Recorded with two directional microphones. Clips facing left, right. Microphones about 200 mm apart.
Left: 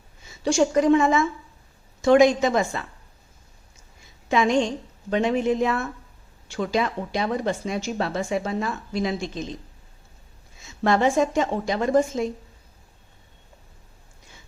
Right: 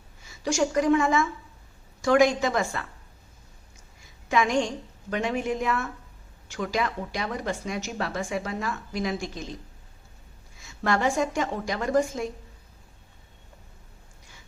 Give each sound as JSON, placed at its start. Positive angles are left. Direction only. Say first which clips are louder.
{"t": 0.3, "sound": "speech", "louder": "left 5 dB", "side_deg": 25}
{"t": 4.3, "sound": "speech", "louder": "left 3 dB", "side_deg": 25}
{"t": 10.6, "sound": "speech", "louder": "left 5 dB", "side_deg": 25}